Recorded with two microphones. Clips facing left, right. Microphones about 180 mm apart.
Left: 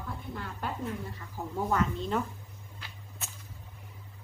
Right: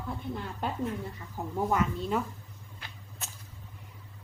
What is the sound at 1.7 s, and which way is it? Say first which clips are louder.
Speech: even; 10° right (ahead or behind).